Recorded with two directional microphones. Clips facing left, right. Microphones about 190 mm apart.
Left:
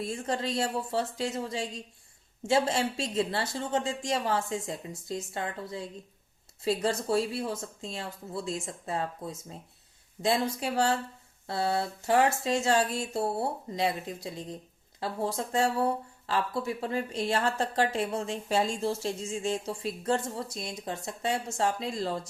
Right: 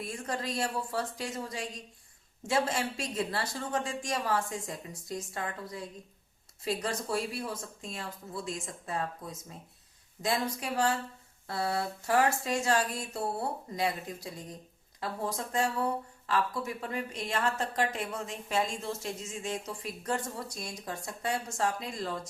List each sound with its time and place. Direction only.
0.0 s speech: 25° left (ahead or behind)